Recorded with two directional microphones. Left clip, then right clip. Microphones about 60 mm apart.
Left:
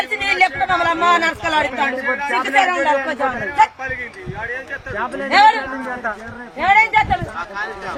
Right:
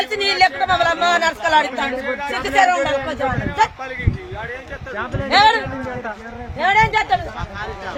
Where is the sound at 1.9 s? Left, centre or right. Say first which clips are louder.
Left 3 dB; right.